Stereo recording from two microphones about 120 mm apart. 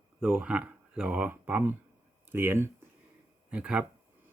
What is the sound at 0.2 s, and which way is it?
Speech, 5° right (ahead or behind).